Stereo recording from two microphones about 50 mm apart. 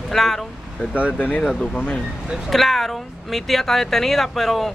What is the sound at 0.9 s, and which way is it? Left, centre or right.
Speech, left.